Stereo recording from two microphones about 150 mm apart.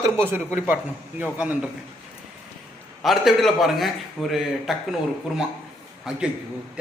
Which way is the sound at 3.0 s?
Centre (ahead or behind).